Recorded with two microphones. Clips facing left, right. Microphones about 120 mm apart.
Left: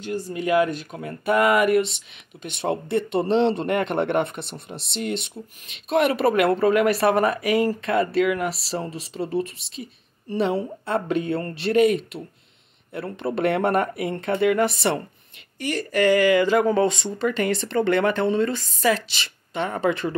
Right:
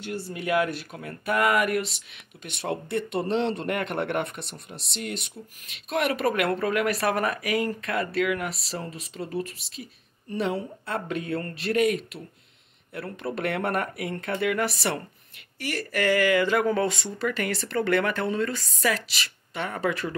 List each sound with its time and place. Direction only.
0.4 s speech: 10° left (ahead or behind)
2.5 s speech: 25° left (ahead or behind)
13.2 s speech: 25° left (ahead or behind)